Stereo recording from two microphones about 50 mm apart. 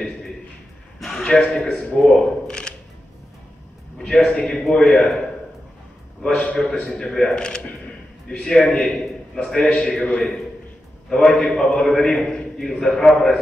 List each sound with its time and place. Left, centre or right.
1.1 s a man's voice: centre
4.0 s a man's voice: centre
6.3 s a man's voice: left
7.1 s a man's voice: centre